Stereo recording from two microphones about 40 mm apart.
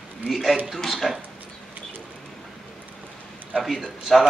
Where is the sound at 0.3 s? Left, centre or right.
Centre.